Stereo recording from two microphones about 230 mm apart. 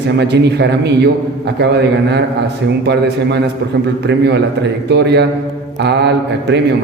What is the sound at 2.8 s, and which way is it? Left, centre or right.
A man's voice, right.